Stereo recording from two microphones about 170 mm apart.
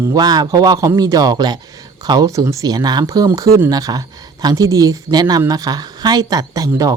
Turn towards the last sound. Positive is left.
turn(degrees=-20)  # may be behind; listen again after turning